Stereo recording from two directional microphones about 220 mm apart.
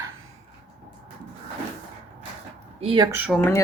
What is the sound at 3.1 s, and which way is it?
Speech, 5° right (ahead or behind).